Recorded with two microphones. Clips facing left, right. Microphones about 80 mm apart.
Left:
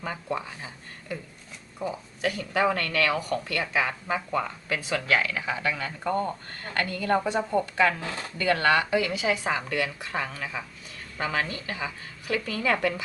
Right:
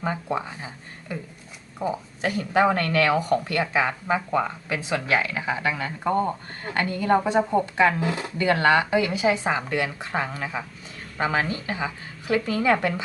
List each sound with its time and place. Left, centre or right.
0.3 s speech: right
8.4 s speech: right